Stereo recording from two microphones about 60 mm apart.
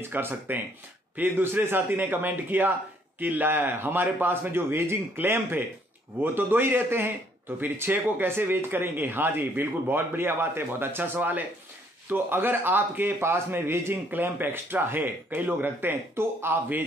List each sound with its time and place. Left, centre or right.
0.0 s a man's voice: right